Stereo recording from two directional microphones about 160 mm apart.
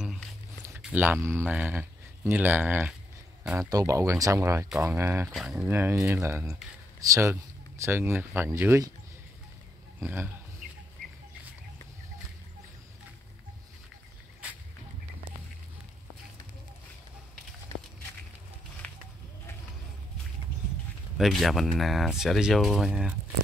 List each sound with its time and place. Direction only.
0.0 s a sound: 5° right (ahead or behind)
0.7 s speech: 10° right (ahead or behind)
5.3 s speech: 5° right (ahead or behind)
5.7 s speech: 15° right (ahead or behind)
9.9 s speech: 10° right (ahead or behind)
18.8 s bird: 10° left (ahead or behind)
21.2 s speech: centre (ahead or behind)